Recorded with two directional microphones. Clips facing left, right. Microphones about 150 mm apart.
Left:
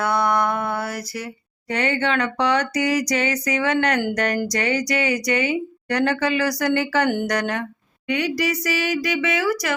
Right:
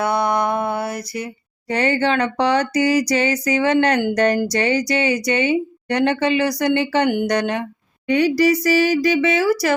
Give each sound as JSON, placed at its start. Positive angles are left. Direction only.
{"t": 0.0, "sound": "music", "side_deg": -20}
{"t": 1.6, "sound": "speech", "side_deg": -35}
{"t": 8.0, "sound": "speech", "side_deg": -35}